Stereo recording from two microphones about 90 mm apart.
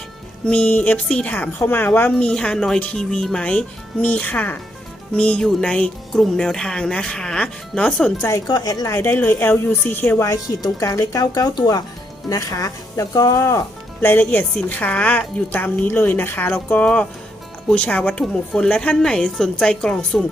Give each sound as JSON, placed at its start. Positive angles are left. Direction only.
{"t": 0.4, "sound": "a woman's voice", "side_deg": 15}
{"t": 8.4, "sound": "speech", "side_deg": 45}
{"t": 8.9, "sound": "speech", "side_deg": 30}
{"t": 10.2, "sound": "a woman's voice", "side_deg": 35}